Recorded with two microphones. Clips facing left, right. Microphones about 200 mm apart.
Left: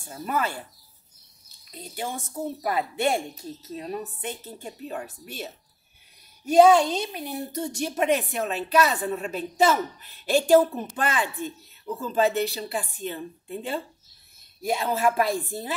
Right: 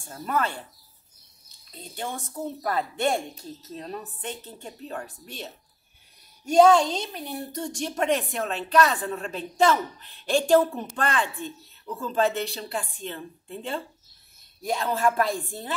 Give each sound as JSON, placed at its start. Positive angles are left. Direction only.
{"t": 0.1, "sound": "a woman's voice", "side_deg": 10}
{"t": 1.7, "sound": "a woman's voice", "side_deg": 10}